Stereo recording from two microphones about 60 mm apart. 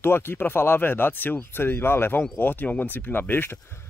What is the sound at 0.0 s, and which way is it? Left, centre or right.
Speech, left.